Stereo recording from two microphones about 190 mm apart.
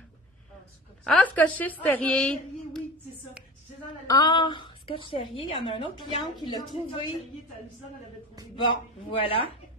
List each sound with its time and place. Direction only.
1.0 s a woman's voice: 5° left (ahead or behind)
4.1 s a woman's voice: 20° left (ahead or behind)
8.5 s a woman's voice: 25° left (ahead or behind)